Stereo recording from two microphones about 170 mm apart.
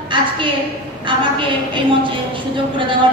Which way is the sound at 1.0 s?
30° right (ahead or behind).